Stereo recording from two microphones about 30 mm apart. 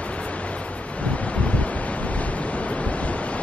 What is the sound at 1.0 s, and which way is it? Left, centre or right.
Waves, left.